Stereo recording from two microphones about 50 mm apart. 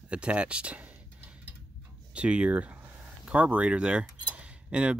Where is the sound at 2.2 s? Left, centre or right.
Right.